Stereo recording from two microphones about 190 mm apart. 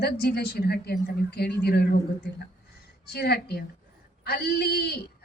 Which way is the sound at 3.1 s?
60° left (ahead or behind).